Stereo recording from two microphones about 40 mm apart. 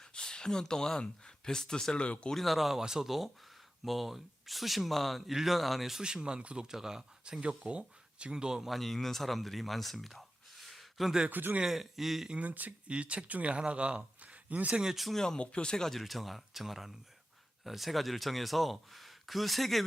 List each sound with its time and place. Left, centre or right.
0.1 s speech: left
2.3 s speech: centre
6.0 s speech: right
6.7 s speech: centre
7.7 s speech: right
8.6 s speech: centre
10.8 s a sound: centre
11.3 s speech: right
11.7 s speech: centre
12.4 s speech: right
12.9 s speech: right
14.8 s speech: centre
15.4 s speech: left
15.8 s speech: centre